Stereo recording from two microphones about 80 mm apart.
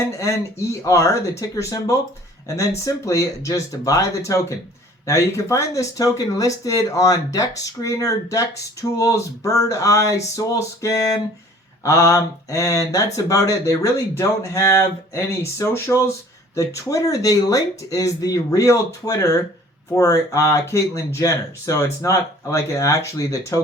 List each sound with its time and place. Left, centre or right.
0.2 s speech: left